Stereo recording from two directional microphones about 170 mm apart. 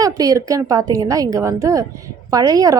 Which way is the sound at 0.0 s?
20° right (ahead or behind).